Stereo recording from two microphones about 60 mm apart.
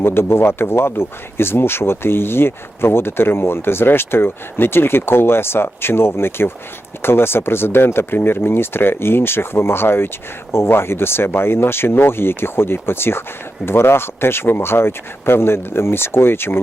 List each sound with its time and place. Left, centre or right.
0.0 s speech: left